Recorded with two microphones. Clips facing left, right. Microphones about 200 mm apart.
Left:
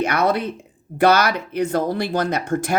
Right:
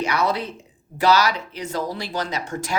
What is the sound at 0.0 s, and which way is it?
Speech, 55° left (ahead or behind).